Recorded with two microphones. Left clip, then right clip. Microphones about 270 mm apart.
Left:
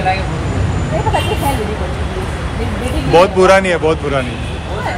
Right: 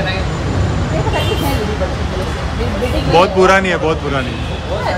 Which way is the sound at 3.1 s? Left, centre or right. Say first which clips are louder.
Left 2 dB; centre.